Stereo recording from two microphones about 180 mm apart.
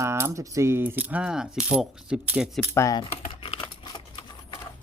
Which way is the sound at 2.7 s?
20° left (ahead or behind).